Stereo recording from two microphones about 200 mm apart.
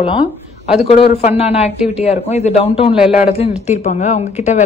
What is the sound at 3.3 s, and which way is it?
Speech, 35° left (ahead or behind).